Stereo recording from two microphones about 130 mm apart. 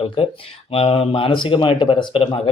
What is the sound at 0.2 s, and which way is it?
Speech, 45° left (ahead or behind).